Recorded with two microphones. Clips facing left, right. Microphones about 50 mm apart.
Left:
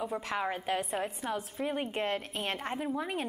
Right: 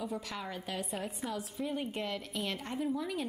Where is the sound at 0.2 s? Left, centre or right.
Left.